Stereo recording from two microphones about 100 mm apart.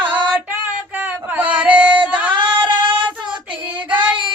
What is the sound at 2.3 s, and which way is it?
Singing, 50° right (ahead or behind).